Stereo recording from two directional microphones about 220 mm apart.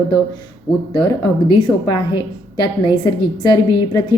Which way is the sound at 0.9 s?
20° left (ahead or behind).